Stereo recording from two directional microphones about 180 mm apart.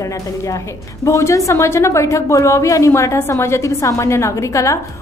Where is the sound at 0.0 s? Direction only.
15° left (ahead or behind).